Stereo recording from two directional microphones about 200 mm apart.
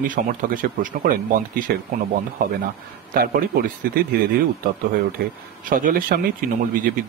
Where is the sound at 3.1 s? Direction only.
45° right (ahead or behind).